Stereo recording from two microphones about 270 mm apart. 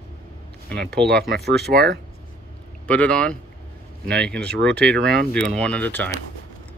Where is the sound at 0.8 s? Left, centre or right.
Right.